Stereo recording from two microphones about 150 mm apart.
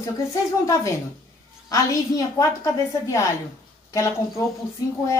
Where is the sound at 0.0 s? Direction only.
25° left (ahead or behind).